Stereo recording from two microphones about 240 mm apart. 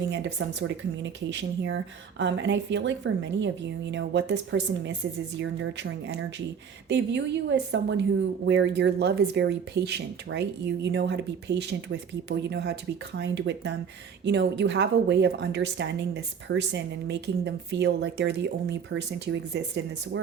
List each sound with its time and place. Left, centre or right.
0.1 s a woman's voice: right